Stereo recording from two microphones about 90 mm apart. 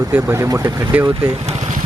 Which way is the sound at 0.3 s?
40° right (ahead or behind).